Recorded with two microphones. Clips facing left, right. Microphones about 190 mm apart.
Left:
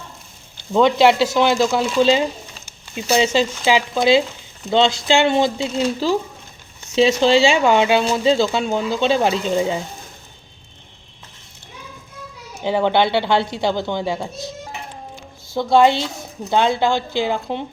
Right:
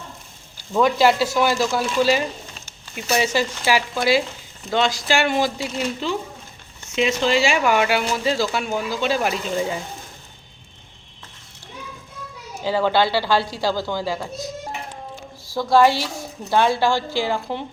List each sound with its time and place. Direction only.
0.5 s speech: 25° left (ahead or behind)
6.9 s speech: 35° left (ahead or behind)
12.6 s a woman's voice: 20° left (ahead or behind)